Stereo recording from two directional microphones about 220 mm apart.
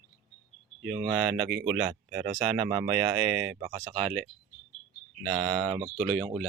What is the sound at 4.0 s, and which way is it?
Speech, centre (ahead or behind).